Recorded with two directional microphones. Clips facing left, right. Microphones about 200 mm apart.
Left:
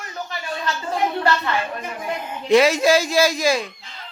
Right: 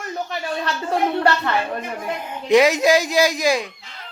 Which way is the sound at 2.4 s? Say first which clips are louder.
Right 1 dB; 15° right (ahead or behind).